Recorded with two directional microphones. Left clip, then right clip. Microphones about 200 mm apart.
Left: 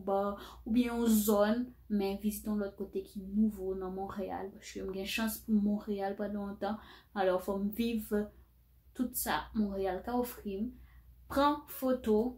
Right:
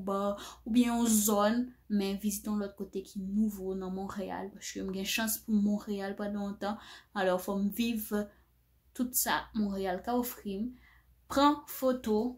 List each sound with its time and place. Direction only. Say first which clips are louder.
0.0 s speech: even; 40° right (ahead or behind)